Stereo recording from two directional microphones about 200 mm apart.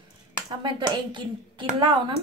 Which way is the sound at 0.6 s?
25° right (ahead or behind).